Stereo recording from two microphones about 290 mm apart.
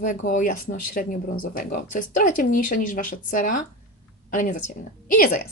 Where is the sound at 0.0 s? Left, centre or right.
Left.